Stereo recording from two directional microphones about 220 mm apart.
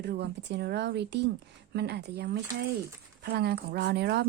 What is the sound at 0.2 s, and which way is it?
A woman's voice, 50° right (ahead or behind).